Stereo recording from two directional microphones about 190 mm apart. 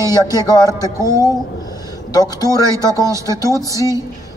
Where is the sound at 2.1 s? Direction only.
20° left (ahead or behind).